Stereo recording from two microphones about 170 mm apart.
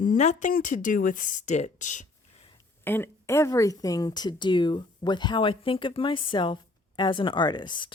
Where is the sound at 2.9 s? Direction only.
15° left (ahead or behind).